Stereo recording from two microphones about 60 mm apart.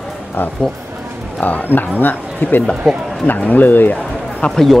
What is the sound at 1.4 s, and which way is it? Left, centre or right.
Speech, left.